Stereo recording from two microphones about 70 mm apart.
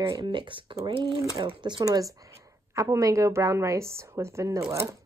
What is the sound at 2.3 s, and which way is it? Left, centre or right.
Speech, right.